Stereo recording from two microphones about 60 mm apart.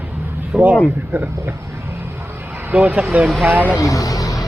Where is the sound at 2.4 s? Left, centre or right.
Right.